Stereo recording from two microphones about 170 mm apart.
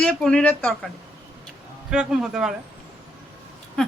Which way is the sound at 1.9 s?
5° right (ahead or behind).